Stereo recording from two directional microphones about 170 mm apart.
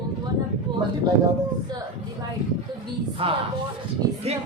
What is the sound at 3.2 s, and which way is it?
Speech, 35° right (ahead or behind).